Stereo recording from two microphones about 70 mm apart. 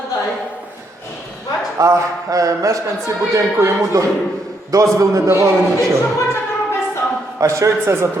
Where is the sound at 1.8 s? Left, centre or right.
Right.